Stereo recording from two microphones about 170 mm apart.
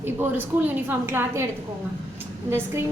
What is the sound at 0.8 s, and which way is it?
Speech, 15° right (ahead or behind).